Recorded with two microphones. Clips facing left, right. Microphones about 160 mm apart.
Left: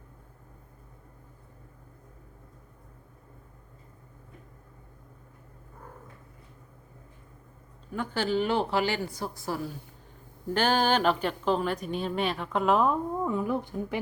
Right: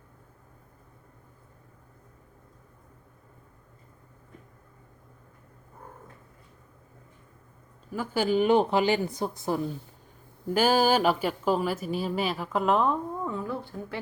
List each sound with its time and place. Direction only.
7.9 s a woman's voice: 5° right (ahead or behind)
10.5 s a woman's voice: 10° right (ahead or behind)
13.2 s a woman's voice: 15° left (ahead or behind)